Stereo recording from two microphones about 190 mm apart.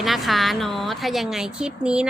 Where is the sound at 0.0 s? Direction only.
Centre (ahead or behind).